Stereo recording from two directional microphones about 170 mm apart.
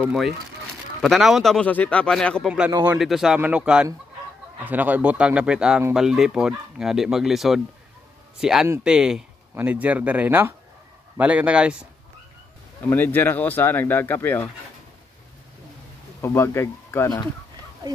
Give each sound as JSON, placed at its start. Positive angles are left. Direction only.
{"t": 0.0, "sound": "speech", "side_deg": 0}
{"t": 12.8, "sound": "speech", "side_deg": 10}
{"t": 16.2, "sound": "speech", "side_deg": 15}
{"t": 17.8, "sound": "speech", "side_deg": -25}